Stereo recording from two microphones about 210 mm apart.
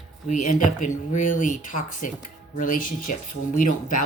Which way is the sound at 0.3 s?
35° left (ahead or behind).